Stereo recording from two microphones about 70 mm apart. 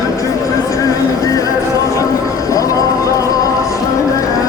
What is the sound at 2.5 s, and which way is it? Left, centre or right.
Music, left.